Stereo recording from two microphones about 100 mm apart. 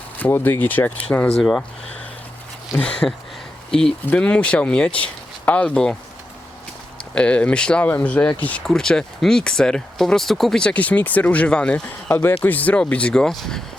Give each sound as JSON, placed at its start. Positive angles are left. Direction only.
{"t": 0.3, "sound": "speech", "side_deg": 25}
{"t": 1.3, "sound": "speech", "side_deg": 5}
{"t": 2.7, "sound": "speech", "side_deg": -5}
{"t": 3.7, "sound": "speech", "side_deg": 5}
{"t": 7.1, "sound": "speech", "side_deg": 10}
{"t": 12.0, "sound": "speech", "side_deg": 25}